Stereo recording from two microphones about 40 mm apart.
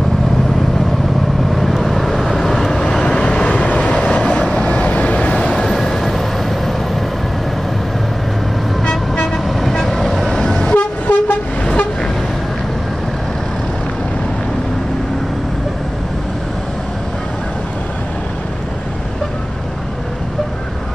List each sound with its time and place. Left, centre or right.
1.5 s vehicle: centre; by 5.7 s left
5.7 s vehicle: centre
8.8 s toot: left
9.4 s vehicle: centre
10.7 s toot: left